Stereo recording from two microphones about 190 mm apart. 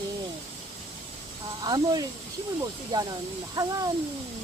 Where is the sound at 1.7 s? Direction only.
20° right (ahead or behind).